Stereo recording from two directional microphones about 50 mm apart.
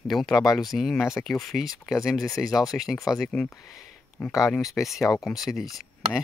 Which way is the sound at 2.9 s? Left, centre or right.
Centre.